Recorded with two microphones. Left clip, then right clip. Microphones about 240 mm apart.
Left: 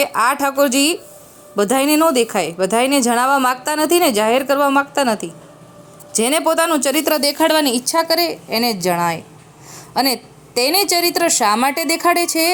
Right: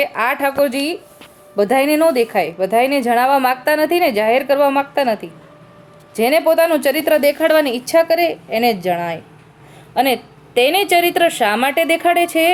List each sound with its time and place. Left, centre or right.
0.0 s speech: left
10.6 s speech: left